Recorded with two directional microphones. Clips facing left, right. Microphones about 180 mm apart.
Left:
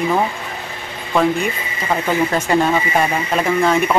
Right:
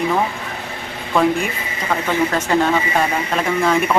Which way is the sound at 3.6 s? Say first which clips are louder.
Right 1 dB; centre (ahead or behind).